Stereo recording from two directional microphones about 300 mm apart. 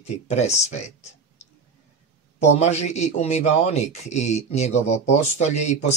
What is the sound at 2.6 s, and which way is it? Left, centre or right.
A man's voice, left.